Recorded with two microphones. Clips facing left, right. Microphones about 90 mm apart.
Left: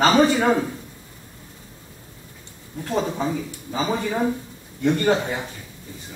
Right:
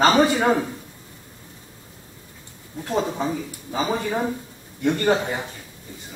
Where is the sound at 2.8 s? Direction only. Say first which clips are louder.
Even; 15° right (ahead or behind).